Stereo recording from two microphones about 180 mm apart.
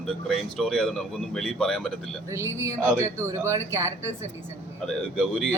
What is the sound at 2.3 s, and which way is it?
Speech, 15° right (ahead or behind).